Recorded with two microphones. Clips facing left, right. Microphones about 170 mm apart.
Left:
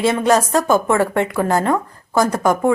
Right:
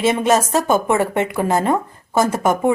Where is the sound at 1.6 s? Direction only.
25° right (ahead or behind).